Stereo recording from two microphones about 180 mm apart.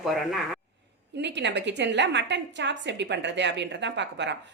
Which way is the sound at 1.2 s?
75° right (ahead or behind).